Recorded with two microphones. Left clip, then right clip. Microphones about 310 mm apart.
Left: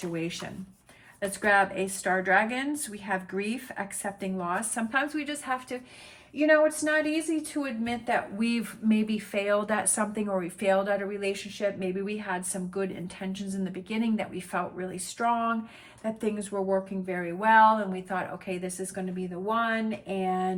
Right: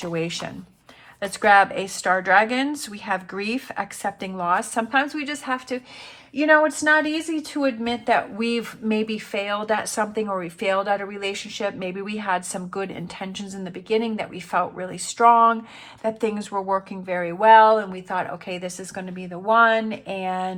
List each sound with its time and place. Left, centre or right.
0.1 s speech: centre